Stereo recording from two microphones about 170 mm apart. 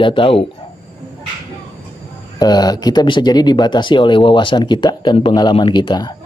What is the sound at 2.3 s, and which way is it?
Speech, 25° left (ahead or behind).